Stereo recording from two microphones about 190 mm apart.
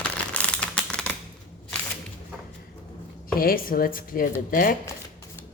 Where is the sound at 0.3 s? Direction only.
5° left (ahead or behind).